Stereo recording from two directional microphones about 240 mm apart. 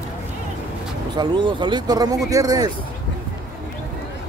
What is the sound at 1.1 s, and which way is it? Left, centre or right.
Speech, centre.